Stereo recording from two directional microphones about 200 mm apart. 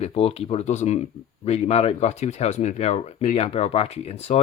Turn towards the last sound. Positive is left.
turn(degrees=35)  # may be behind; listen again after turning